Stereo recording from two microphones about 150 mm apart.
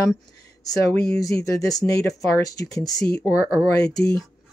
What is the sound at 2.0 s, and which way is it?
Speech, 20° left (ahead or behind).